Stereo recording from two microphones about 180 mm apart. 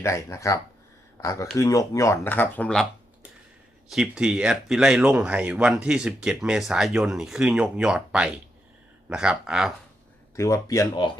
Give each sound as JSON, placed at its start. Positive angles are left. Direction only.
{"t": 0.0, "sound": "speech", "side_deg": 15}
{"t": 3.9, "sound": "speech", "side_deg": -5}
{"t": 10.3, "sound": "speech", "side_deg": 15}